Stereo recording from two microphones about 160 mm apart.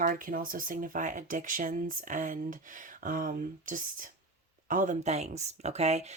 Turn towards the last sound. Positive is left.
turn(degrees=-45)  # may be behind; listen again after turning